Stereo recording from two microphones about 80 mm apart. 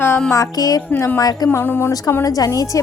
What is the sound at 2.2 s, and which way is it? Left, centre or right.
Speech, left.